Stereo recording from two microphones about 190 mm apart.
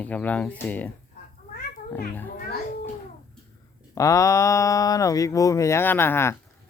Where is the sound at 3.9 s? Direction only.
15° left (ahead or behind).